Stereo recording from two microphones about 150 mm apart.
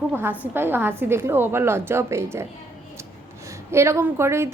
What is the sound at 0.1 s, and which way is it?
A woman's voice, 15° right (ahead or behind).